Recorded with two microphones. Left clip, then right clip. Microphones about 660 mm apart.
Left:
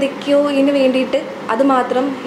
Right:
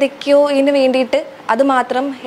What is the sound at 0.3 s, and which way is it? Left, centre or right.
A woman's voice, right.